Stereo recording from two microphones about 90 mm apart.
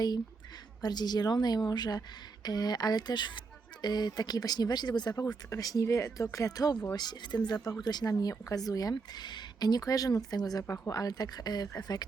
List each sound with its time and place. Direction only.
0.8 s a woman's voice: 50° left (ahead or behind)
5.5 s speech: 40° left (ahead or behind)
6.9 s a woman's voice: 50° left (ahead or behind)